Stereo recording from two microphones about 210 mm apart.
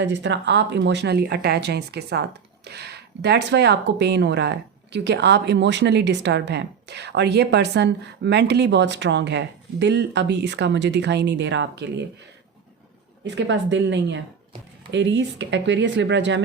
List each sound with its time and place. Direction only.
0.0 s speech: 55° right (ahead or behind)
13.2 s speech: 60° right (ahead or behind)